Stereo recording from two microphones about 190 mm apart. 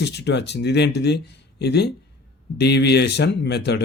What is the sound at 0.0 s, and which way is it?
A man's voice, 60° left (ahead or behind).